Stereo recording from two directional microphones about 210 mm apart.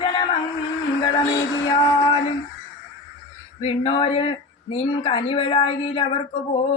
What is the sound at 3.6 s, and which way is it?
Speech, 25° left (ahead or behind).